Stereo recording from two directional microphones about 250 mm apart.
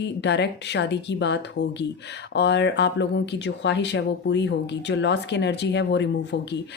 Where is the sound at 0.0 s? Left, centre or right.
Left.